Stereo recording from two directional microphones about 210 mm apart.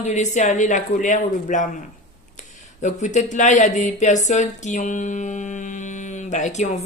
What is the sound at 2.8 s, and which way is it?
A man's voice, 35° left (ahead or behind).